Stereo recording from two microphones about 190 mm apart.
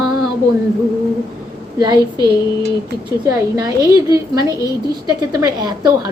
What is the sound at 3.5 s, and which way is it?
A woman's voice, 20° right (ahead or behind).